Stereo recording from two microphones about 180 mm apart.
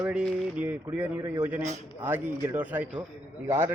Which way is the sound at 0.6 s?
15° right (ahead or behind).